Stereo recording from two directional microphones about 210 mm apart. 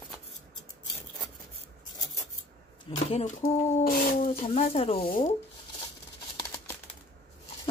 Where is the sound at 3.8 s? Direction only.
45° left (ahead or behind).